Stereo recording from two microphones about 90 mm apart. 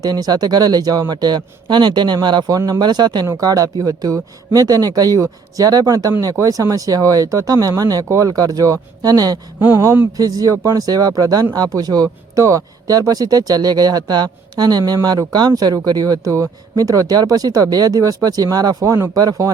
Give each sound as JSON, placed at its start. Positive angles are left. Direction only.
{"t": 0.0, "sound": "speech", "side_deg": -45}
{"t": 2.6, "sound": "speech", "side_deg": -45}
{"t": 9.6, "sound": "speech", "side_deg": -25}
{"t": 10.2, "sound": "a man's voice", "side_deg": -45}